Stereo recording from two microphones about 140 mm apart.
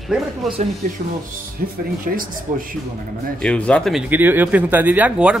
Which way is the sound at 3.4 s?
5° left (ahead or behind).